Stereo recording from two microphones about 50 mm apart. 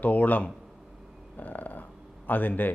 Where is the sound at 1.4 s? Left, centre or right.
Left.